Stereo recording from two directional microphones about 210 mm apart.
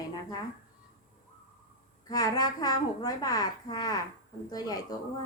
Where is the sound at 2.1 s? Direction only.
20° left (ahead or behind).